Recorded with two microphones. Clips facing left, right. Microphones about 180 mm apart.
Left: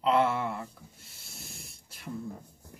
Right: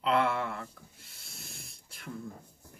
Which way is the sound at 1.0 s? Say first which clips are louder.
Left 1 dB; centre (ahead or behind).